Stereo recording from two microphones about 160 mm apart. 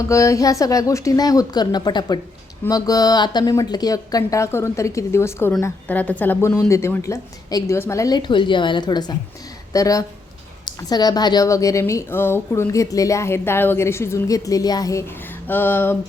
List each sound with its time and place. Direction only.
0.0 s speech: 20° left (ahead or behind)